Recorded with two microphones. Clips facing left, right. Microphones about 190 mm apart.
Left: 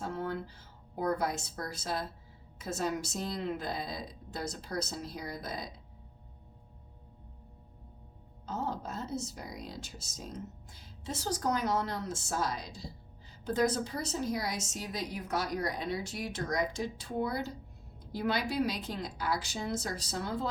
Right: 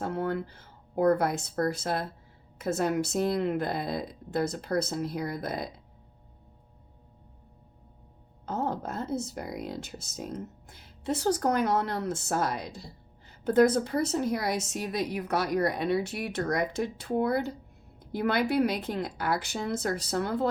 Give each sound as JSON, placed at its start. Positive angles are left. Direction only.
{"t": 0.0, "sound": "speech", "side_deg": -60}
{"t": 8.4, "sound": "speech", "side_deg": -55}